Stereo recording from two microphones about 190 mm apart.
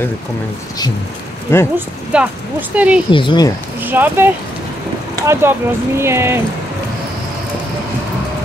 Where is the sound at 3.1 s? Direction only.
25° left (ahead or behind).